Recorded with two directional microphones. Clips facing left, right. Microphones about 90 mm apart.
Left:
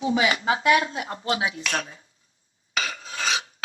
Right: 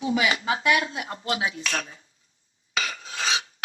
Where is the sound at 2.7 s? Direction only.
35° left (ahead or behind).